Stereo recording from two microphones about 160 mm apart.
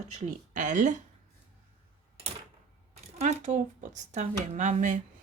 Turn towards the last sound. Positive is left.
turn(degrees=-50)  # may be behind; listen again after turning